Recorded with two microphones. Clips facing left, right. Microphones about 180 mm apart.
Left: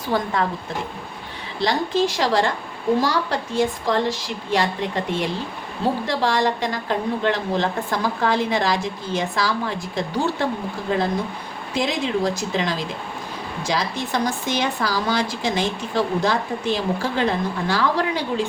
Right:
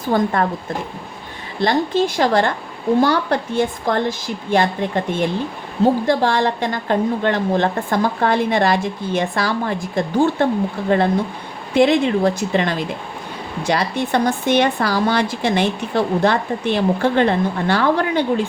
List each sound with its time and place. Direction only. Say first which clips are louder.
0.1 s speech: right 5 dB; 45° right (ahead or behind)
1.6 s speech: right 3 dB; 55° right (ahead or behind)
6.1 s speech: right 4 dB; 55° right (ahead or behind)